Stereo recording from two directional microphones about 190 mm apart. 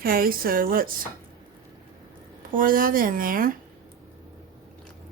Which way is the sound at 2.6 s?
45° right (ahead or behind).